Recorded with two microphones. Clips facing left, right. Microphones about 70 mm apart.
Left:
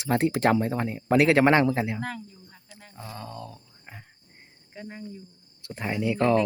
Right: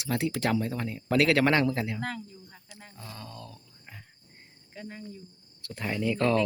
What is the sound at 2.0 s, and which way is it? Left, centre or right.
Speech, centre.